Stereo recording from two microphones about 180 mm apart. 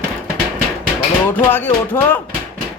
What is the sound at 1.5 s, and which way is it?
Music, 10° left (ahead or behind).